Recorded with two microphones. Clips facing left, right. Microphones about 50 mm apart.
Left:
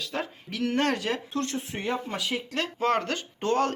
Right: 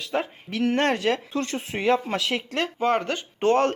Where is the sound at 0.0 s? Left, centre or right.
Right.